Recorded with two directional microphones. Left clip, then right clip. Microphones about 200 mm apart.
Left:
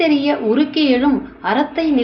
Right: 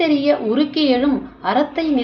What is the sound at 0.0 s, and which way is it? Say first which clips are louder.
Speech: left 1 dB; 5° left (ahead or behind).